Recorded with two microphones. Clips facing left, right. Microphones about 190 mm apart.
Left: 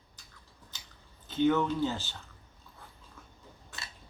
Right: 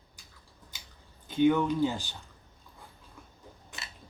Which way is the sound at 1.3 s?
10° right (ahead or behind).